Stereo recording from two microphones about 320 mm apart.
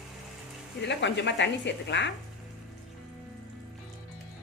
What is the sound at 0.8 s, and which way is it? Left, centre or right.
Speech, left.